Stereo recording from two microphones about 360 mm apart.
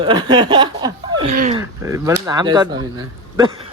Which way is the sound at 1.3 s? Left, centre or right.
Right.